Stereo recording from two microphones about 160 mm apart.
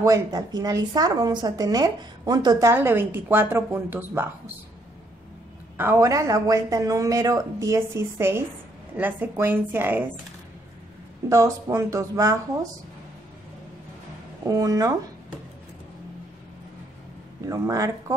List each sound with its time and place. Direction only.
0.0 s speech: 20° right (ahead or behind)
5.8 s a woman's voice: 15° right (ahead or behind)
11.2 s speech: 20° right (ahead or behind)
14.4 s speech: 20° right (ahead or behind)
17.5 s speech: 20° right (ahead or behind)